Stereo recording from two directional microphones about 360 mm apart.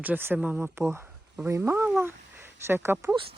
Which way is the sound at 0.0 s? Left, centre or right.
Centre.